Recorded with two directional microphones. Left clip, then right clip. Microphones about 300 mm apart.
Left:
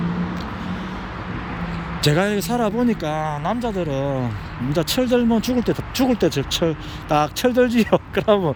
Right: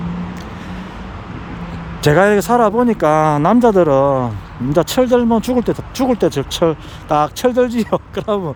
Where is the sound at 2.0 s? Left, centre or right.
Centre.